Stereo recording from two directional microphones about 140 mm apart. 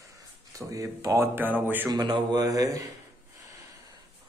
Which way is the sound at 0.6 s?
25° right (ahead or behind).